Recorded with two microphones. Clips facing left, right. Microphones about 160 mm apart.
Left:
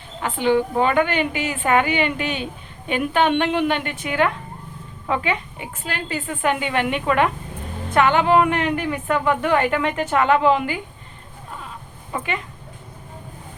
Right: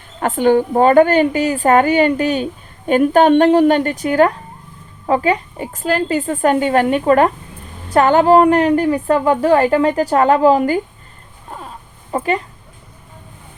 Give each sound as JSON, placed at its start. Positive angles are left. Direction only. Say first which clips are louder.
{"t": 0.2, "sound": "a woman's voice", "louder": "right 6 dB", "side_deg": -45}
{"t": 12.1, "sound": "a woman's voice", "louder": "right 8 dB", "side_deg": -40}